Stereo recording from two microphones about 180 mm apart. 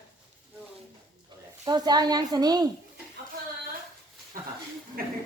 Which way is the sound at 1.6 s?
25° right (ahead or behind).